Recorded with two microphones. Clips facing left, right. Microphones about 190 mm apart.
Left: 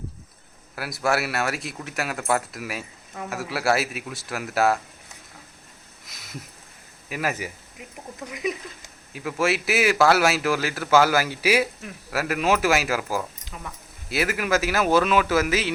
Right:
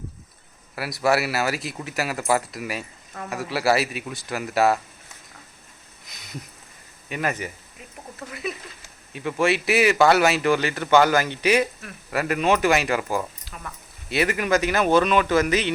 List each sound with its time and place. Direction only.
0.8 s speech: centre (ahead or behind)
6.1 s a sound: centre (ahead or behind)
7.1 s speech: 5° left (ahead or behind)
9.1 s speech: centre (ahead or behind)
13.4 s a sound: 15° left (ahead or behind)
13.7 s speech: centre (ahead or behind)